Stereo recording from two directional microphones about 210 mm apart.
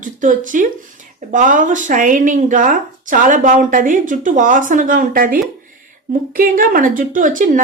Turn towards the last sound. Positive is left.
turn(degrees=-40)  # may be behind; listen again after turning